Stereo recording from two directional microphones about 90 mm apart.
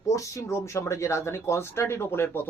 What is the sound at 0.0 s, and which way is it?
Speech, 35° left (ahead or behind).